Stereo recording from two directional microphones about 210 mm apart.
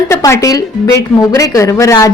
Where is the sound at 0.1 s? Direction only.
15° left (ahead or behind).